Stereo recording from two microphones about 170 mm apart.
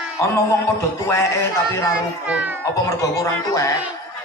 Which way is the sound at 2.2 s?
10° right (ahead or behind).